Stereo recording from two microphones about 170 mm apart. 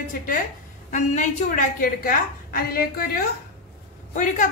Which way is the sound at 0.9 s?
45° left (ahead or behind).